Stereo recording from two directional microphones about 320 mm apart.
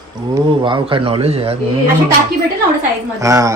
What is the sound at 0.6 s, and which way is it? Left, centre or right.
Speech, centre.